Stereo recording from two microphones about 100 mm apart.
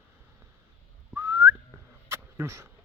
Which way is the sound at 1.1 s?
25° right (ahead or behind).